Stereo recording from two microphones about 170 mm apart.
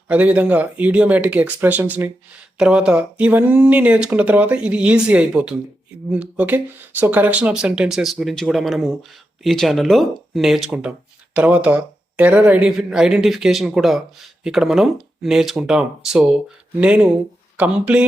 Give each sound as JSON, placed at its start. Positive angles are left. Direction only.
{"t": 0.1, "sound": "speech", "side_deg": -10}